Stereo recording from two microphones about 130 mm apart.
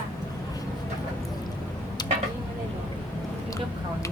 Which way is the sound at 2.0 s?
30° left (ahead or behind).